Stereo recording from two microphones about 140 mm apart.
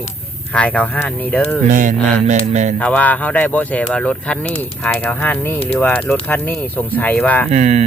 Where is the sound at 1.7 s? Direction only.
65° right (ahead or behind).